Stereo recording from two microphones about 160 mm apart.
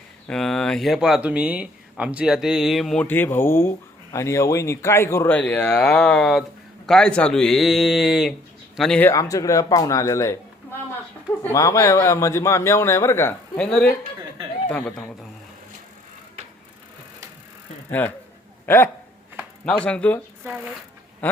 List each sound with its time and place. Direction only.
0.3 s speech: 5° left (ahead or behind)
9.0 s a man's voice: 20° left (ahead or behind); by 15.3 s 5° left (ahead or behind)
18.0 s speech: 10° left (ahead or behind)